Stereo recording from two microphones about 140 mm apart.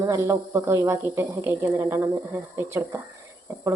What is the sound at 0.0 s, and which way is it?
Dishes, 25° right (ahead or behind).